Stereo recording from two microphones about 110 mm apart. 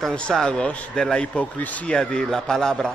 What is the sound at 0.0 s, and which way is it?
A man's voice, 5° left (ahead or behind).